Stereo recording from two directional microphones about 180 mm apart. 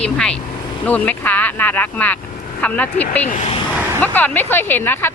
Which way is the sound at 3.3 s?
40° left (ahead or behind).